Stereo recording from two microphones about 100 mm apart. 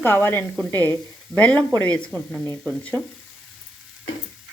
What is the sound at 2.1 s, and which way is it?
Speech, 45° right (ahead or behind).